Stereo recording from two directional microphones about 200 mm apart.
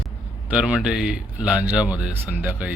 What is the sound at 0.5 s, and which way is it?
Speech, 5° right (ahead or behind).